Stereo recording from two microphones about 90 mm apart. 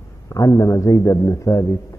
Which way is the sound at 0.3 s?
40° left (ahead or behind).